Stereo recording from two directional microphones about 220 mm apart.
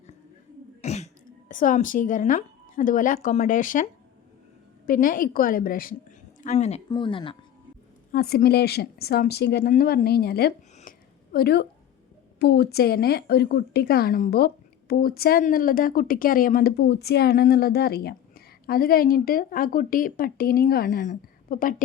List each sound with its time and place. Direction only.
0.8 s speech: 30° left (ahead or behind)
4.9 s a woman's voice: 40° left (ahead or behind); by 7.3 s 20° left (ahead or behind)
8.1 s a woman's voice: 40° left (ahead or behind)
10.8 s a sound: 40° left (ahead or behind)
12.4 s a woman's voice: 50° left (ahead or behind)